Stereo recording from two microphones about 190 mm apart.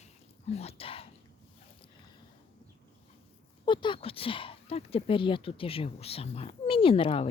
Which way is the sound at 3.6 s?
25° left (ahead or behind).